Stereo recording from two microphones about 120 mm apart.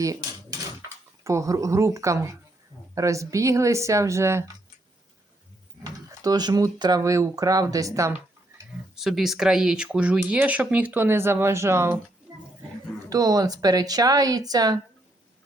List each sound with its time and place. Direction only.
0.8 s speech: 25° right (ahead or behind)
5.8 s speech: 35° right (ahead or behind)
9.0 s speech: centre (ahead or behind); by 11.9 s 20° right (ahead or behind)
13.1 s speech: 30° right (ahead or behind)